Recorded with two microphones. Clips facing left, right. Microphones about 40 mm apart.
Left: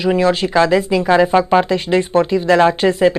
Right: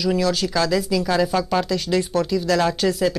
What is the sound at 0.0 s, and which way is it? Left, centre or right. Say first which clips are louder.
Speech: left 6 dB; left.